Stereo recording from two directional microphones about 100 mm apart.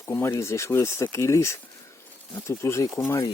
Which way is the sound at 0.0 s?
30° left (ahead or behind).